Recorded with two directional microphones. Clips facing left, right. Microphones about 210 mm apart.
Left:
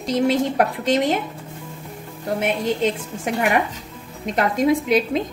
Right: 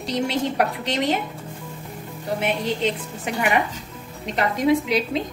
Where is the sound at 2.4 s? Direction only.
50° left (ahead or behind).